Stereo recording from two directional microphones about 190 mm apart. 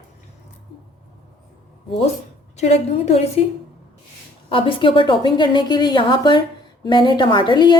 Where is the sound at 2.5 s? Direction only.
35° left (ahead or behind).